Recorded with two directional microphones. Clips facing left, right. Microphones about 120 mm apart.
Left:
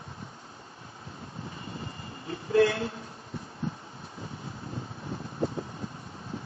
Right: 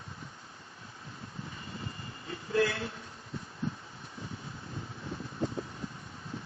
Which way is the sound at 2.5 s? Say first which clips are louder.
Left 6 dB; 25° left (ahead or behind).